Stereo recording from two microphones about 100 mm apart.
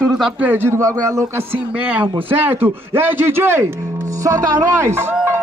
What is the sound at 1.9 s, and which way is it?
Speech, 15° right (ahead or behind).